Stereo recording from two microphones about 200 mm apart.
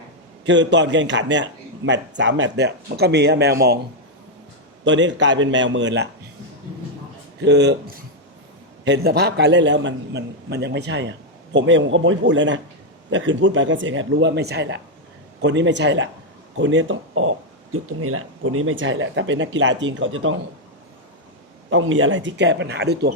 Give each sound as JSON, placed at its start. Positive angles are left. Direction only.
{"t": 0.4, "sound": "a man's voice", "side_deg": -65}
{"t": 4.9, "sound": "a man's voice", "side_deg": -65}
{"t": 7.4, "sound": "a man's voice", "side_deg": -60}
{"t": 8.8, "sound": "a man's voice", "side_deg": -55}
{"t": 21.7, "sound": "a man's voice", "side_deg": -75}